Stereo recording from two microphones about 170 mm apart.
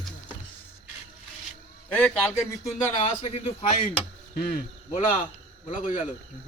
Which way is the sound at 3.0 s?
30° left (ahead or behind).